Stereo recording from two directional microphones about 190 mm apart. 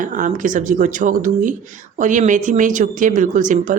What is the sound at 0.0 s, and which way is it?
Speech, 45° right (ahead or behind).